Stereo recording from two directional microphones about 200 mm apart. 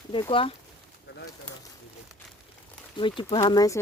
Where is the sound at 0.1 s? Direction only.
25° left (ahead or behind).